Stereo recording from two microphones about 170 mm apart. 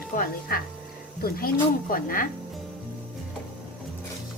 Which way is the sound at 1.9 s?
55° left (ahead or behind).